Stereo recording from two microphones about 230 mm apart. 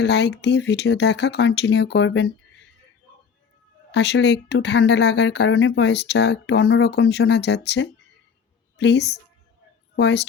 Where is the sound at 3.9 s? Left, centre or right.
Left.